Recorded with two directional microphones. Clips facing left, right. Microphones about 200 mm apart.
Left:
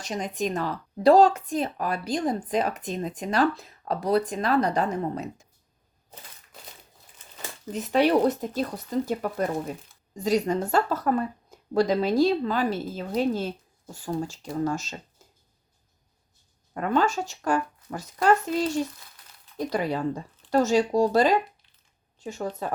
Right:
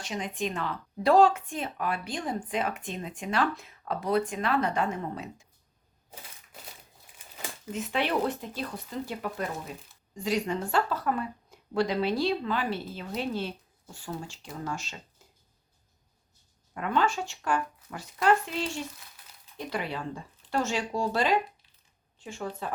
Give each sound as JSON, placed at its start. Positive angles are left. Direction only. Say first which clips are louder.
{"t": 0.0, "sound": "speech", "louder": "left 4 dB", "side_deg": 40}
{"t": 7.7, "sound": "speech", "louder": "left 8 dB", "side_deg": 40}
{"t": 16.7, "sound": "speech", "louder": "left 4 dB", "side_deg": 40}